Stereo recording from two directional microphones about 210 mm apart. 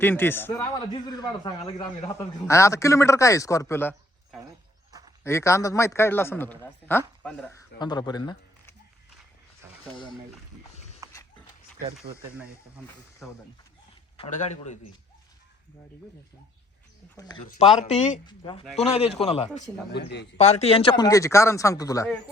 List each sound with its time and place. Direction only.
0.0 s a man's voice: 10° left (ahead or behind)
5.2 s speech: 15° left (ahead or behind)
7.8 s speech: 20° left (ahead or behind)
10.8 s horse: 30° left (ahead or behind)
11.9 s speech: 5° right (ahead or behind)
14.2 s a man's voice: 30° left (ahead or behind)
17.2 s speech: 20° left (ahead or behind)
17.6 s a man's voice: 30° left (ahead or behind)
18.3 s a man's voice: 25° left (ahead or behind)
19.9 s a man's voice: 55° left (ahead or behind)
20.4 s speech: 30° left (ahead or behind); by 22.0 s 15° left (ahead or behind)